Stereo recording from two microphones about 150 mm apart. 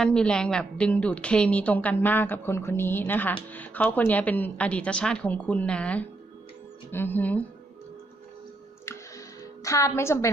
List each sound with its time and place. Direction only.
0.0 s a woman's voice: 5° left (ahead or behind)
8.9 s music: 20° left (ahead or behind)